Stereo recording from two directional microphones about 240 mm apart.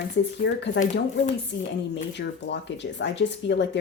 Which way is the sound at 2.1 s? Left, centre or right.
Left.